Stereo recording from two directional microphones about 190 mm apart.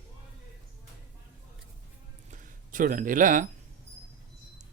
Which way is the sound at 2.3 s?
45° right (ahead or behind).